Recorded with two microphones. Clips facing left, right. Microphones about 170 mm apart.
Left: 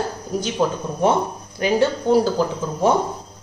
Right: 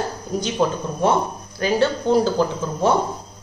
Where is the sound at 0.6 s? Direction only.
5° left (ahead or behind).